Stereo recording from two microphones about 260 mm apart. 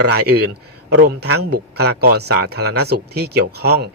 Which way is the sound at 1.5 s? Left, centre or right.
Right.